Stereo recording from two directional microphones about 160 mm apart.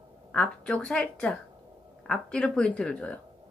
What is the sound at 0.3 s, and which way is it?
Speech, 5° left (ahead or behind).